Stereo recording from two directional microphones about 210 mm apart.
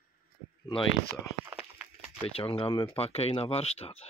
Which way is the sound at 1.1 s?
10° right (ahead or behind).